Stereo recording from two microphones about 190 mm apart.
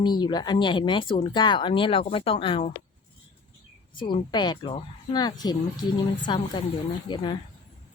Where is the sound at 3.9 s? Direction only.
25° left (ahead or behind).